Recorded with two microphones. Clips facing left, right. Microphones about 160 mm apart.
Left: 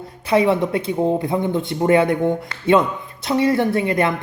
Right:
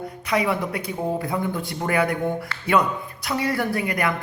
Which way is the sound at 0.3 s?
25° left (ahead or behind).